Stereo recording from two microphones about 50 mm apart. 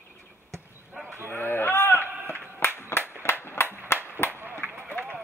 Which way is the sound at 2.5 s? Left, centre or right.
Left.